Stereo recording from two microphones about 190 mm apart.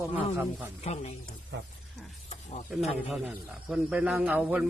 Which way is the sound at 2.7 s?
5° right (ahead or behind).